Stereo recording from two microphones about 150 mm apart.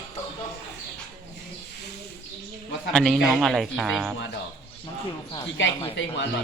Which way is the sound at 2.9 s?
Centre (ahead or behind).